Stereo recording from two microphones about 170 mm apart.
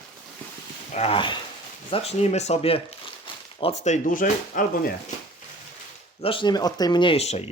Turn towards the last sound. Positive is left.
turn(degrees=40)  # may be behind; listen again after turning